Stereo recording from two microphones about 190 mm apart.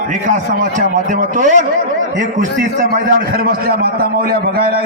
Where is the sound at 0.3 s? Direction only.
45° right (ahead or behind).